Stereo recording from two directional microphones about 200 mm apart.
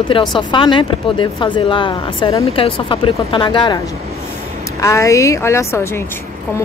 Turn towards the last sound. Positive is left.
turn(degrees=15)  # may be behind; listen again after turning